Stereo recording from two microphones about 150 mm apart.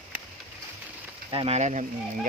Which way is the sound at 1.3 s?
40° right (ahead or behind).